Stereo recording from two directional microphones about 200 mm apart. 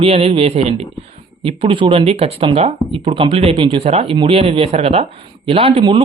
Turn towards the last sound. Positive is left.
turn(degrees=-25)  # may be behind; listen again after turning